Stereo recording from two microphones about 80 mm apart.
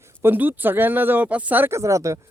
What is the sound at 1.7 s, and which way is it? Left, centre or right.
Speech, right.